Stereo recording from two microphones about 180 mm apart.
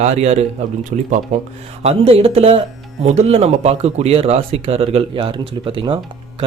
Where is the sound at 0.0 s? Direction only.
35° right (ahead or behind).